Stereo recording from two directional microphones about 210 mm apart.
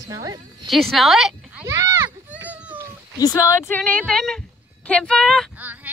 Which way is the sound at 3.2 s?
15° left (ahead or behind).